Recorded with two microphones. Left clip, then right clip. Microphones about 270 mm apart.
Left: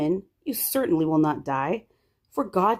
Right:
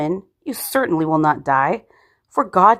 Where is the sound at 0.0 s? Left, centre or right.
Centre.